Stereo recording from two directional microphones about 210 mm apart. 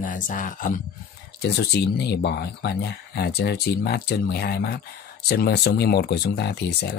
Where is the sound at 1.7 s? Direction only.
50° left (ahead or behind).